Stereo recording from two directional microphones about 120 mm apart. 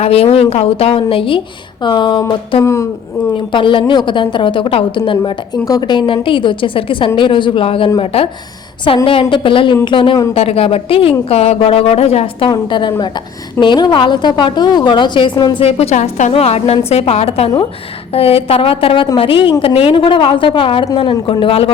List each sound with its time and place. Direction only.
0.0 s a woman's voice: 55° left (ahead or behind); by 2.2 s 40° left (ahead or behind)
2.6 s speech: 25° left (ahead or behind)
3.5 s a woman's voice: 45° left (ahead or behind)
10.3 s a woman's voice: 55° left (ahead or behind)
12.5 s a woman's voice: 40° left (ahead or behind)
15.6 s a woman's voice: 60° left (ahead or behind); by 16.3 s 80° left
16.3 s a woman's voice: 60° left (ahead or behind)